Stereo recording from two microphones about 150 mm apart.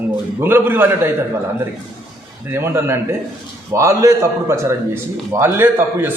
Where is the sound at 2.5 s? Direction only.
15° right (ahead or behind).